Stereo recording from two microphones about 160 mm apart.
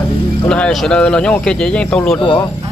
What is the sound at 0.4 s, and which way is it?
Speech, 5° left (ahead or behind).